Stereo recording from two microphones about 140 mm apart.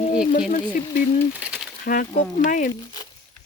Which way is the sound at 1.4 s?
5° right (ahead or behind).